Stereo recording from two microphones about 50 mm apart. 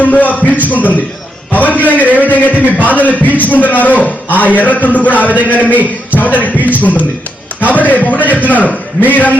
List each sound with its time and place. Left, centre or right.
0.0 s a man's voice: left
6.6 s speech: right
7.7 s a man's voice: left